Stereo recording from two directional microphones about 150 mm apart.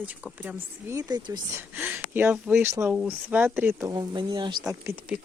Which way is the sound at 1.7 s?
15° right (ahead or behind).